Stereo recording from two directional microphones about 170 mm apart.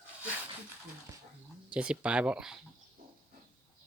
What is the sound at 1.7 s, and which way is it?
Speech, 5° right (ahead or behind).